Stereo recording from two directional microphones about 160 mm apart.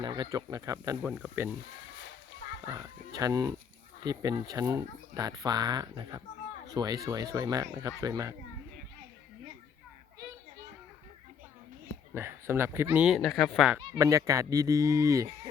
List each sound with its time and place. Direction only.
0.0 s speech: 25° right (ahead or behind)
3.2 s speech: 20° right (ahead or behind)
12.1 s speech: 15° right (ahead or behind)
13.9 s speech: 20° right (ahead or behind)